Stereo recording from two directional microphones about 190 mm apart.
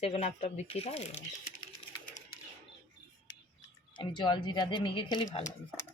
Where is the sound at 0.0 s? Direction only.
35° left (ahead or behind).